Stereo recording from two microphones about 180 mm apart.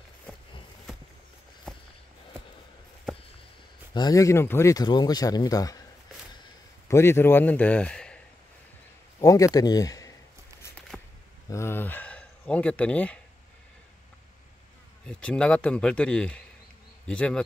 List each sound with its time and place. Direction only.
1.7 s walk: 5° left (ahead or behind)
3.9 s speech: 20° left (ahead or behind)
6.9 s a man's voice: 15° left (ahead or behind)
9.2 s speech: 20° left (ahead or behind)
10.9 s a sound: 5° left (ahead or behind)
11.5 s speech: 15° left (ahead or behind)
15.0 s a man's voice: 5° left (ahead or behind)
17.0 s bee: 5° left (ahead or behind)